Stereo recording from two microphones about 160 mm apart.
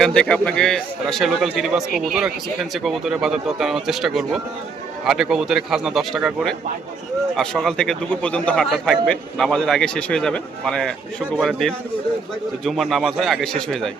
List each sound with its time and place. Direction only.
0.0 s a man's voice: 5° left (ahead or behind)